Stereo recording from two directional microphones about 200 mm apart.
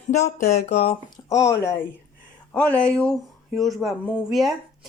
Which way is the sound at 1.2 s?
15° left (ahead or behind).